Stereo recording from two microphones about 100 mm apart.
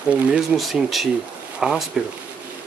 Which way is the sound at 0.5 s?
Centre (ahead or behind).